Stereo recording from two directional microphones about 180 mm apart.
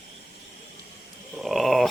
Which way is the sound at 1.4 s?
Centre (ahead or behind).